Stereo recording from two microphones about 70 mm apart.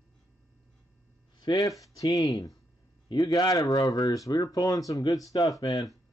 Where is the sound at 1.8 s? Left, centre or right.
Left.